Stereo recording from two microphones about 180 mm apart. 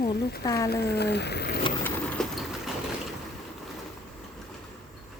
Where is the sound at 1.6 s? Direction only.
30° left (ahead or behind).